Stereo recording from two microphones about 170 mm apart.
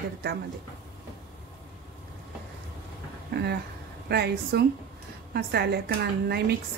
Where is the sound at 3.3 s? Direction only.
70° right (ahead or behind).